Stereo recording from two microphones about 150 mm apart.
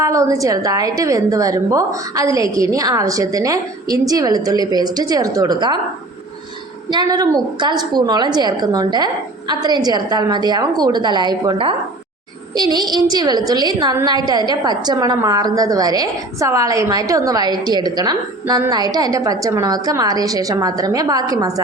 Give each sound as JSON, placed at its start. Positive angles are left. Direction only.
{"t": 0.0, "sound": "a woman's voice", "side_deg": -20}
{"t": 6.9, "sound": "a woman's voice", "side_deg": -25}